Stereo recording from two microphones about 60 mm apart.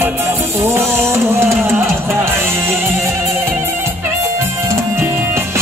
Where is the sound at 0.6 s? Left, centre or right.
Right.